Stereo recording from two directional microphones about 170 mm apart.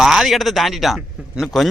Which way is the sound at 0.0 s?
Centre (ahead or behind).